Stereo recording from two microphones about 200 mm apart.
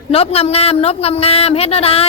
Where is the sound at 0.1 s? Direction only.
30° left (ahead or behind).